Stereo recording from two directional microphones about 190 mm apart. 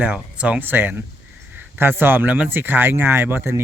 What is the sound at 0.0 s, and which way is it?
Speech, 5° right (ahead or behind).